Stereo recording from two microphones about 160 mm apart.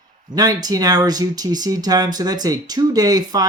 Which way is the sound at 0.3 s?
25° right (ahead or behind).